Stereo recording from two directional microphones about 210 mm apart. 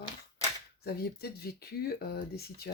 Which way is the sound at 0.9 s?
50° left (ahead or behind).